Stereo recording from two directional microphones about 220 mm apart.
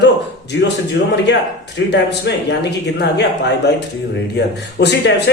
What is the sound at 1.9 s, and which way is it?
Speech, 50° left (ahead or behind).